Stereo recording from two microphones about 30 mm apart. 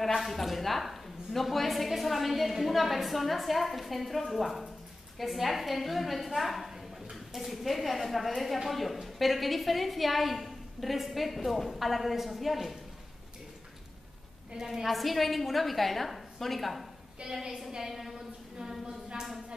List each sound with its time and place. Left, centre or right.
0.2 s a woman's voice: centre
14.7 s a woman's voice: centre
17.2 s a woman's voice: right
17.6 s a woman's voice: centre
18.9 s a sound: right